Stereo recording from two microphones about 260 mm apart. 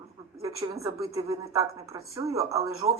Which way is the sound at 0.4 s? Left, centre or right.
Centre.